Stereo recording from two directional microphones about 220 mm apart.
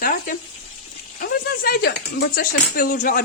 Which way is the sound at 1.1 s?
45° left (ahead or behind).